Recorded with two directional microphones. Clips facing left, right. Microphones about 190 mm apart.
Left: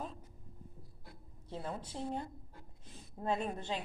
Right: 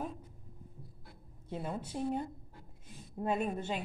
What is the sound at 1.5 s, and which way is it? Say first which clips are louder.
A woman's voice: right 3 dB; 10° right (ahead or behind).